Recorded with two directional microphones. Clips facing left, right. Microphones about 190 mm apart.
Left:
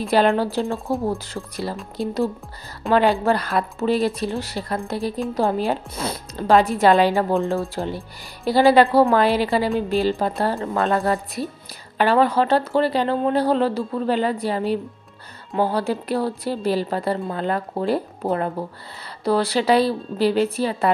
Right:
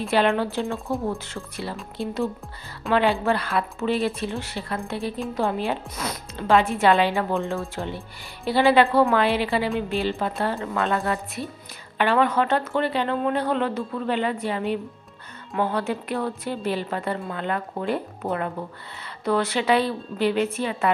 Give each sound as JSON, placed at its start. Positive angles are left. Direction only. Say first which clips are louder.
{"t": 0.1, "sound": "speech", "louder": "left 3 dB", "side_deg": 40}